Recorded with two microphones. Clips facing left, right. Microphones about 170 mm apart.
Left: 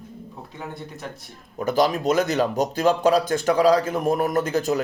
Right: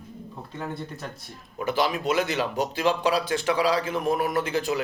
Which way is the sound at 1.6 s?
40° left (ahead or behind).